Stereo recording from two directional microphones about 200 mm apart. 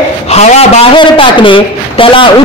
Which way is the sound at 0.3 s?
30° left (ahead or behind).